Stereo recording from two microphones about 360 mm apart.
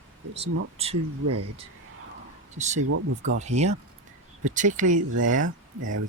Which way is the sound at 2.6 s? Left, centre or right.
Centre.